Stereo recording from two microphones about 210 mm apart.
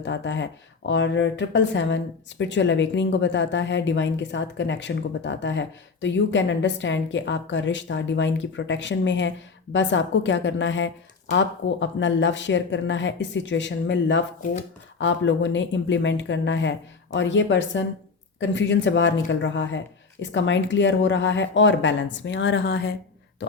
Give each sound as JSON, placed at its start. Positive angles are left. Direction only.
{"t": 0.0, "sound": "a woman's voice", "side_deg": 60}